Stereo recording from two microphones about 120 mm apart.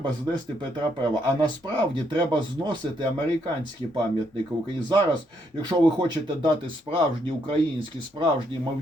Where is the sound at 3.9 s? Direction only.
40° right (ahead or behind).